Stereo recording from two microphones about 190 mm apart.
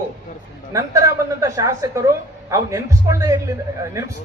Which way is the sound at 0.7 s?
15° right (ahead or behind).